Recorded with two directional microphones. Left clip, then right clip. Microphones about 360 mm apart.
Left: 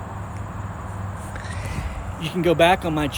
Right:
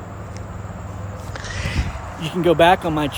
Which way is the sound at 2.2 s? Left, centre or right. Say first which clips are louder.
Right 3 dB; centre.